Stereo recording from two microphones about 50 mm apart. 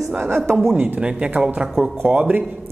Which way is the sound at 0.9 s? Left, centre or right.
Right.